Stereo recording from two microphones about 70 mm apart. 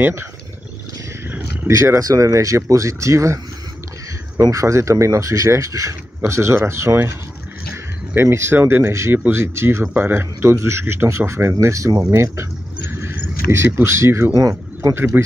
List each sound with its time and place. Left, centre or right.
0.0 s speech: right
1.2 s a sound: right
1.7 s speech: right
4.4 s speech: right
12.0 s a sound: right
13.5 s speech: right